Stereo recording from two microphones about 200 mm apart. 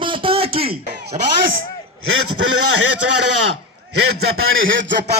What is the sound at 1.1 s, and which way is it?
Speech, 40° right (ahead or behind).